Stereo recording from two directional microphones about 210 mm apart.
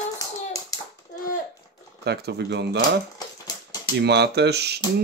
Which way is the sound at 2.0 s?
50° right (ahead or behind).